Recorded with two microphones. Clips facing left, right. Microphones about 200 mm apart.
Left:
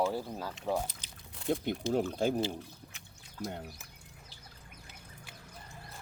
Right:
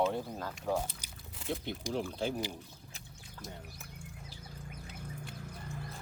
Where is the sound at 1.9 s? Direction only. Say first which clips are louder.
Left 5 dB; 45° left (ahead or behind).